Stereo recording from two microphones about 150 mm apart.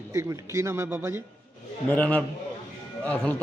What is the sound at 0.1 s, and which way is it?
Speech, 20° right (ahead or behind).